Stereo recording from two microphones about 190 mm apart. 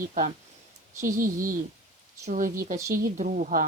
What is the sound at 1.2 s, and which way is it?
Speech, 45° right (ahead or behind).